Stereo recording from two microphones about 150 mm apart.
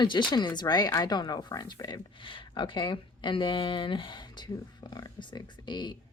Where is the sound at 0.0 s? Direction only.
30° left (ahead or behind).